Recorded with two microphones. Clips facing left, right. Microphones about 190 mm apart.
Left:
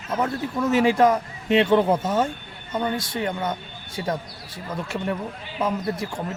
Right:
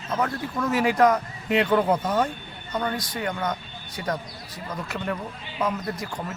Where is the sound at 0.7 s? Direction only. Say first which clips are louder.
Left 2 dB; 25° left (ahead or behind).